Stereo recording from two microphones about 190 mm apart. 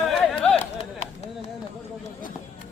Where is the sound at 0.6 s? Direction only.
35° left (ahead or behind).